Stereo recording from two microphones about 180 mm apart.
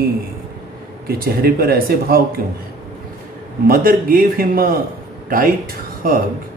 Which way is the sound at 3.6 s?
55° right (ahead or behind).